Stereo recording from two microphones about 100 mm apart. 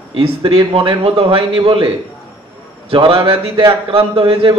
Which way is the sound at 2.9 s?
60° right (ahead or behind).